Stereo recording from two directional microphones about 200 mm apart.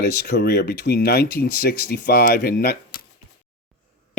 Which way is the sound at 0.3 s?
55° left (ahead or behind).